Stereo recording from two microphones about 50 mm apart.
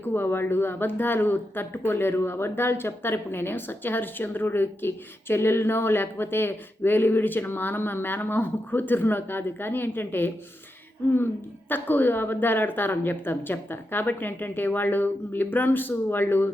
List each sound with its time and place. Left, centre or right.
0.0 s speech: left
11.7 s a woman's voice: left